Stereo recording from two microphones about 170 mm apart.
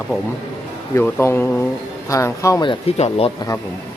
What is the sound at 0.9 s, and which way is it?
A man's voice, 15° left (ahead or behind).